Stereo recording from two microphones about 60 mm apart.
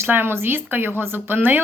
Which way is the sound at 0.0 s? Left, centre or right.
Right.